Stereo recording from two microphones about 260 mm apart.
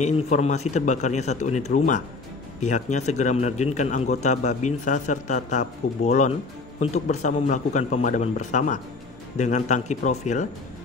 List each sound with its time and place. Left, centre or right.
0.0 s a man's voice: left